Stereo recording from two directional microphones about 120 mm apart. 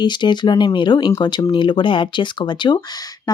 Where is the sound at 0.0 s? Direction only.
40° left (ahead or behind).